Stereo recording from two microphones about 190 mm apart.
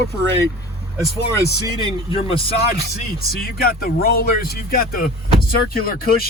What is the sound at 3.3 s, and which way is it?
Speech, 50° left (ahead or behind).